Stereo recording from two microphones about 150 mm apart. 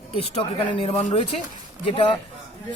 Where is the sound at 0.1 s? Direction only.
40° left (ahead or behind).